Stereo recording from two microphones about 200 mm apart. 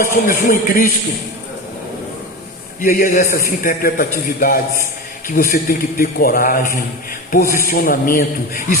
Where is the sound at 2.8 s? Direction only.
45° left (ahead or behind).